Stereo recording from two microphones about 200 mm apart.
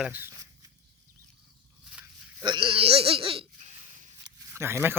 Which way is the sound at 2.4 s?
25° right (ahead or behind).